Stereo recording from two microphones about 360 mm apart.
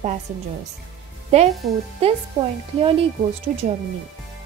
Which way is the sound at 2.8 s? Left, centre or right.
Centre.